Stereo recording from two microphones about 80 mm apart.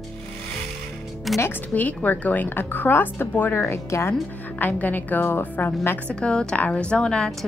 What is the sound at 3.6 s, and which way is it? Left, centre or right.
Speech, left.